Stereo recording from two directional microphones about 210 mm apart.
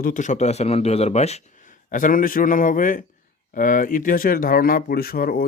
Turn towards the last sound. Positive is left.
turn(degrees=45)  # may be behind; listen again after turning